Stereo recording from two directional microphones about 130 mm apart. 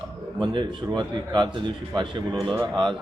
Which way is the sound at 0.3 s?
35° right (ahead or behind).